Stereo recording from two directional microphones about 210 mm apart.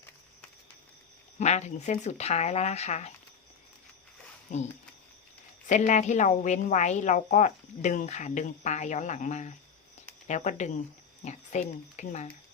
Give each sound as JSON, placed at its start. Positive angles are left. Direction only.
{"t": 1.4, "sound": "a woman's voice", "side_deg": 35}
{"t": 4.5, "sound": "a woman's voice", "side_deg": 35}